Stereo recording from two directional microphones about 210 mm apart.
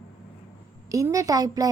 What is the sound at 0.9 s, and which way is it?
Speech, 15° right (ahead or behind).